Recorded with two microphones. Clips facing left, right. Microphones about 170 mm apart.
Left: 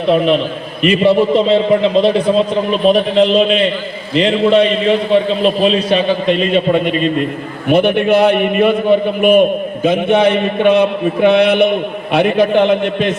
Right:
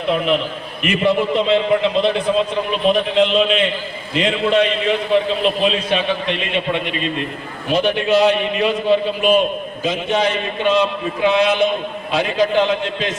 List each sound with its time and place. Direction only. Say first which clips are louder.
0.8 s a man's voice: left 6 dB; 35° left (ahead or behind)
7.7 s a man's voice: left 5 dB; 60° left (ahead or behind)